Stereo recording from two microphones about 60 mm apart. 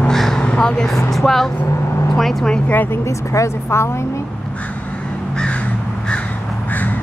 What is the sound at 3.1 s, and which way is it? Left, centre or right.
Speech, left.